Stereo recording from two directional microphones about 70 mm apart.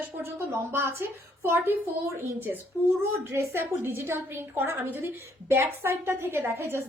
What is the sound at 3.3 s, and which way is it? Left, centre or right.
A woman's voice, right.